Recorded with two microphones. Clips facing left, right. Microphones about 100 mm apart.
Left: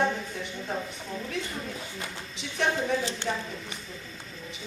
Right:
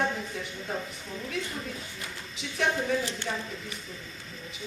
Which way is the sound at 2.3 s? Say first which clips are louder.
Left 1 dB; centre (ahead or behind).